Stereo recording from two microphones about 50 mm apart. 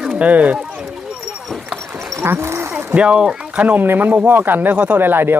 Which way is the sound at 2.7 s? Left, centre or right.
Right.